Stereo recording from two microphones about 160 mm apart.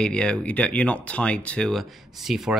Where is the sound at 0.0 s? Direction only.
5° left (ahead or behind).